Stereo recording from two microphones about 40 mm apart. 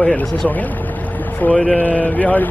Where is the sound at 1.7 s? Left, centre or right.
Left.